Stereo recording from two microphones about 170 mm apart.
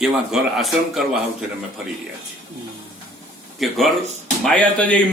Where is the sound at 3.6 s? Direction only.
Centre (ahead or behind).